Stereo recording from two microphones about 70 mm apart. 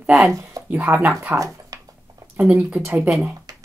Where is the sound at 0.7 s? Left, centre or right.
Right.